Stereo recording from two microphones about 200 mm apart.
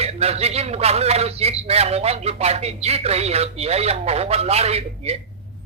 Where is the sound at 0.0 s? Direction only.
30° right (ahead or behind).